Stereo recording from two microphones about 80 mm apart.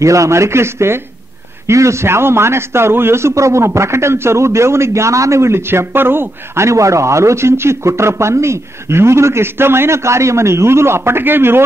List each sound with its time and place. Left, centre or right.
0.0 s a man's voice: right